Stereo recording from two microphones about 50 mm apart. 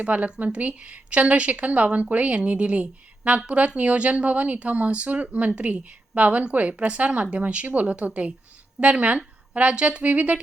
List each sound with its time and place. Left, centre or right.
0.0 s a woman's voice: right